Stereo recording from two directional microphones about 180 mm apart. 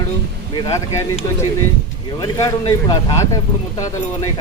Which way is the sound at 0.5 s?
15° left (ahead or behind).